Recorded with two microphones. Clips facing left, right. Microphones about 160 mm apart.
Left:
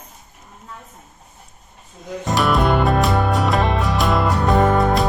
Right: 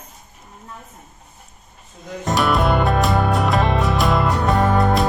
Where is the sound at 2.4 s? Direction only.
Centre (ahead or behind).